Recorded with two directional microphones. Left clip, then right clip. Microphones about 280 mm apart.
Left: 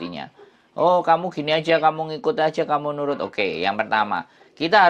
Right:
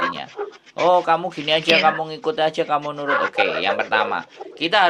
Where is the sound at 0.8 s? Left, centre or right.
Left.